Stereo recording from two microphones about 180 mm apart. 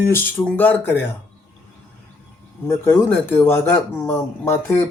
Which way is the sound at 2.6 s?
15° left (ahead or behind).